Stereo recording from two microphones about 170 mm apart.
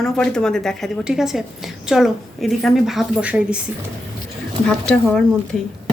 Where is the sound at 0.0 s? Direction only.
5° left (ahead or behind).